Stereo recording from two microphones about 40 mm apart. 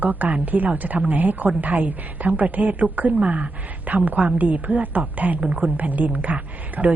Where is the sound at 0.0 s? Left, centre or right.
Right.